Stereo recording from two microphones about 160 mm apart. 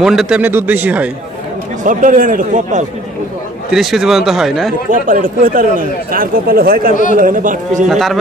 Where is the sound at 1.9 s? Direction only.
55° right (ahead or behind).